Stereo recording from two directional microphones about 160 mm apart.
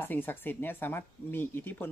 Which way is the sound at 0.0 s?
10° left (ahead or behind).